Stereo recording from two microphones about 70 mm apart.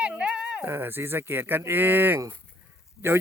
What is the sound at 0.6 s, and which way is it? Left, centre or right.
Speech, right.